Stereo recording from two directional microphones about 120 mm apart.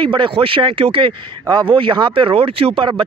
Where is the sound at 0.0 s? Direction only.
45° right (ahead or behind).